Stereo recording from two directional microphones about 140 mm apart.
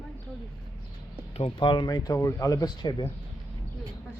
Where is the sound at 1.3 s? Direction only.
40° left (ahead or behind).